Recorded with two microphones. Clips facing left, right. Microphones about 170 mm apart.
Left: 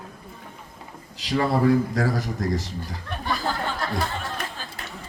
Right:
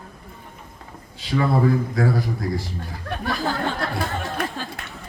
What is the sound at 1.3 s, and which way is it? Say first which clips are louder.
A man's voice: even; 40° left (ahead or behind).